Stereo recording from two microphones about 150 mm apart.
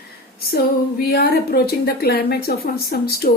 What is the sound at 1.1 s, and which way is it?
A woman's voice, 90° left.